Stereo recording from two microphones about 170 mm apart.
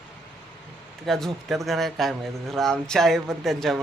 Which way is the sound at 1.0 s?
Centre (ahead or behind).